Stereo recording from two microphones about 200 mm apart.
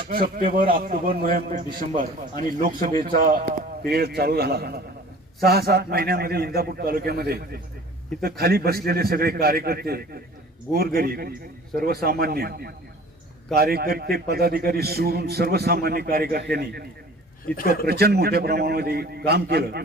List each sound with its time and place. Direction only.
0.1 s a man's voice: 45° right (ahead or behind)
17.5 s a man's voice: 5° left (ahead or behind)
17.8 s a man's voice: 50° right (ahead or behind)